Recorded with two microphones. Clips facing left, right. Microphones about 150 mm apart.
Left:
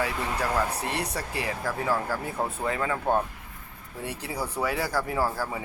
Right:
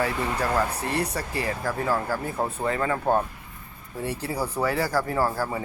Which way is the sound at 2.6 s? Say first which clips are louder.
Right 3 dB; 5° left (ahead or behind).